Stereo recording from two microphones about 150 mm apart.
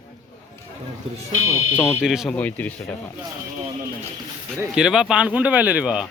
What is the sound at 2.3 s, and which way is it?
Speech, 10° left (ahead or behind).